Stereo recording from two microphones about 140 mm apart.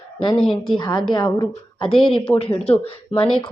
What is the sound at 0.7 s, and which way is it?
Speech, 30° left (ahead or behind).